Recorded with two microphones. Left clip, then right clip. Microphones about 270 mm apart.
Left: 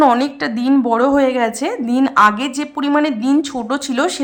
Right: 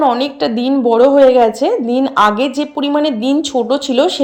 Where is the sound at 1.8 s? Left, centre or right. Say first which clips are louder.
Right 2 dB; left.